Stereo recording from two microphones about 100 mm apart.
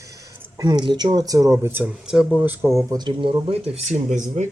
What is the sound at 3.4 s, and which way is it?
Speech, 85° right.